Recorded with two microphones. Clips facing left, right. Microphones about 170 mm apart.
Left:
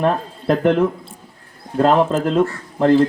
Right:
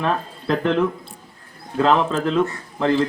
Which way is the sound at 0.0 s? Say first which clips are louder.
Left 4 dB; 50° left (ahead or behind).